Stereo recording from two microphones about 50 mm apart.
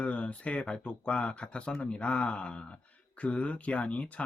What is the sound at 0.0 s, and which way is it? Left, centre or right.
Speech, left.